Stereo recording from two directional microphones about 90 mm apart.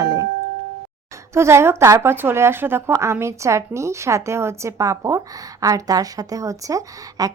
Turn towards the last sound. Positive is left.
turn(degrees=-40)  # may be behind; listen again after turning